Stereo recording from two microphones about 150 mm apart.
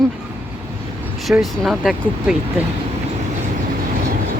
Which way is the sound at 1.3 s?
Centre (ahead or behind).